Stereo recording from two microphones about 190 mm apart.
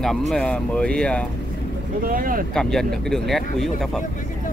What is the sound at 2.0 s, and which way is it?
Speech, 50° right (ahead or behind).